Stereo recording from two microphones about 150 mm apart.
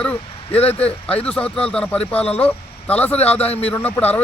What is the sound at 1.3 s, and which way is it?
Speech, 5° left (ahead or behind).